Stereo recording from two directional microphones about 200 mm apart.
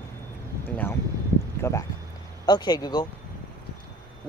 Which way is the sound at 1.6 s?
15° left (ahead or behind).